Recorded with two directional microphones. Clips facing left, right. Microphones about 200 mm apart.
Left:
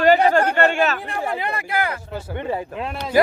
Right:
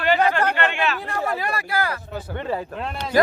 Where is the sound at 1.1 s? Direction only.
20° left (ahead or behind).